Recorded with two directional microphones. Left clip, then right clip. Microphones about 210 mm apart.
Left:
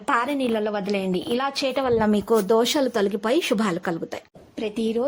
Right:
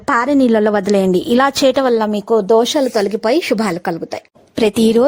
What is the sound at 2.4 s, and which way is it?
A woman's voice, 20° right (ahead or behind).